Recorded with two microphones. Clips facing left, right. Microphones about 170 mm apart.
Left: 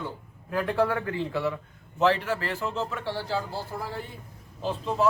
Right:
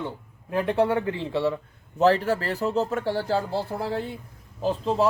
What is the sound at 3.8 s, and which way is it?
Speech, 75° right (ahead or behind).